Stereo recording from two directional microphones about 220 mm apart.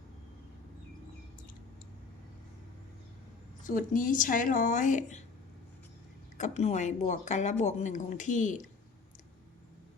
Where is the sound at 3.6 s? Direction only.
40° left (ahead or behind).